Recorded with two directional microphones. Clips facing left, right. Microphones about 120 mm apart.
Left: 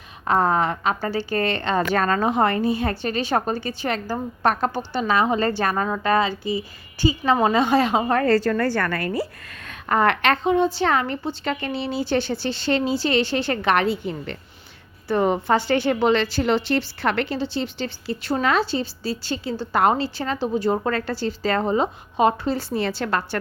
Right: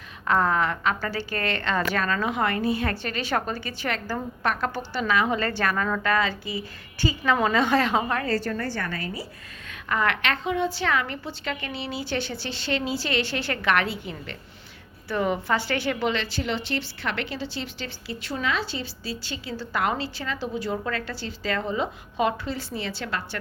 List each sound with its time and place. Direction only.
0.3 s a woman's voice: 30° left (ahead or behind)
1.9 s a woman's voice: 40° left (ahead or behind); by 5.0 s 20° left (ahead or behind)
5.0 s a woman's voice: 30° left (ahead or behind)
8.0 s a woman's voice: 40° left (ahead or behind)
8.3 s a woman's voice: 85° left; by 9.2 s 60° left (ahead or behind)
9.6 s a woman's voice: 40° left (ahead or behind)
17.3 s a woman's voice: 30° left (ahead or behind)
18.0 s a woman's voice: 40° left (ahead or behind)
18.6 s a woman's voice: 30° left (ahead or behind)
22.7 s a woman's voice: 50° left (ahead or behind)